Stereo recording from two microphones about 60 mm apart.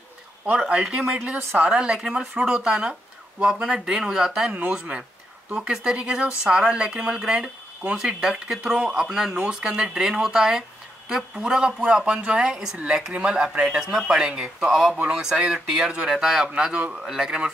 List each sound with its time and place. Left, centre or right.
0.5 s speech: centre
13.9 s speech: centre
16.7 s speech: right
17.0 s speech: centre